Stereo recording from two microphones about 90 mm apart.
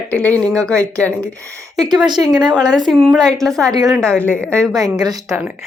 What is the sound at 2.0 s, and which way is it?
Speech, 55° right (ahead or behind).